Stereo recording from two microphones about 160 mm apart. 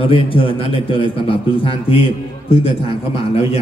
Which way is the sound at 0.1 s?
35° left (ahead or behind).